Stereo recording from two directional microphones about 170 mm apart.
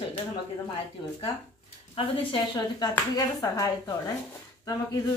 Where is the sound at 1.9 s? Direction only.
25° left (ahead or behind).